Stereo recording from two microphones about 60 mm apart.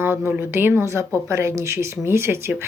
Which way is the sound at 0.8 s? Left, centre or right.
Right.